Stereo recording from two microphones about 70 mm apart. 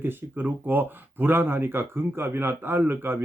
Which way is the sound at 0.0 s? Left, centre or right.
Right.